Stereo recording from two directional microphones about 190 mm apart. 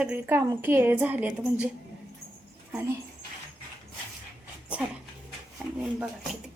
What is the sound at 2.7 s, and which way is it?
Speech, 10° right (ahead or behind).